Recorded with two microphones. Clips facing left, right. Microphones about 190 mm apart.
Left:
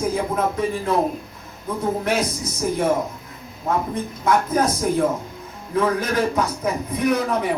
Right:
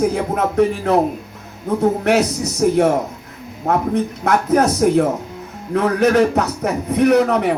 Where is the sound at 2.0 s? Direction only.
70° right (ahead or behind).